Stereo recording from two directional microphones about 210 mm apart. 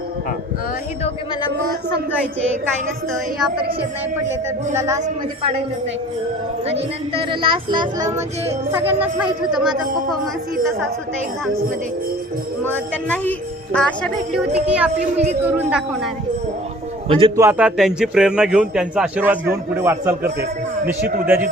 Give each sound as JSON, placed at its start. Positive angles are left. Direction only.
{"t": 3.1, "sound": "a man's voice", "side_deg": -5}
{"t": 6.7, "sound": "speech", "side_deg": -30}
{"t": 12.6, "sound": "a man's voice", "side_deg": 10}
{"t": 17.1, "sound": "speech", "side_deg": -25}
{"t": 17.3, "sound": "a man's voice", "side_deg": -10}